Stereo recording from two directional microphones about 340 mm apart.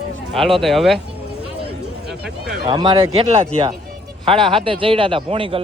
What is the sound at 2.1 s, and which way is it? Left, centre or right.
Speech, centre.